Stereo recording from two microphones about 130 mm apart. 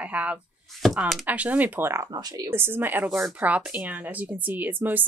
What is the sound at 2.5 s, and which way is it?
Speech, 15° right (ahead or behind).